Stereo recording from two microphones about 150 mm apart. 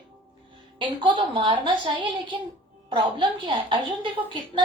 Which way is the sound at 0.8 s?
35° right (ahead or behind).